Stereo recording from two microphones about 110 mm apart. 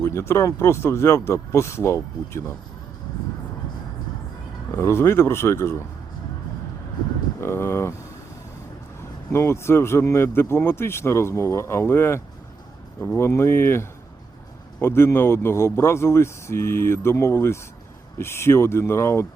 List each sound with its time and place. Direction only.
0.0 s speech: 25° left (ahead or behind)
4.7 s speech: 25° left (ahead or behind)
7.4 s speech: 25° left (ahead or behind)
9.3 s speech: 25° left (ahead or behind)